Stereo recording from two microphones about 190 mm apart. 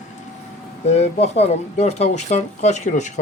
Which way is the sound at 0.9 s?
35° left (ahead or behind).